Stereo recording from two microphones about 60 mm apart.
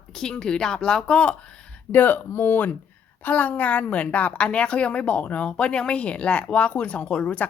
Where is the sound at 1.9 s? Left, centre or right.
Left.